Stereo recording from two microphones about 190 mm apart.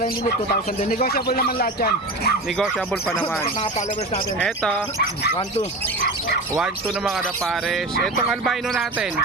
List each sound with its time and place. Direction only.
0.9 s speech: 50° left (ahead or behind)
2.6 s speech: 5° left (ahead or behind)
3.6 s speech: 35° left (ahead or behind)
4.4 s speech: 5° left (ahead or behind)
6.8 s speech: centre (ahead or behind)